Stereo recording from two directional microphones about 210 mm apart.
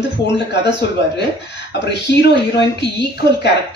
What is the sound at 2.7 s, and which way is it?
Speech, 55° left (ahead or behind).